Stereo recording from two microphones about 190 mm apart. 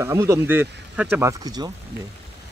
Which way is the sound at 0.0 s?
15° right (ahead or behind).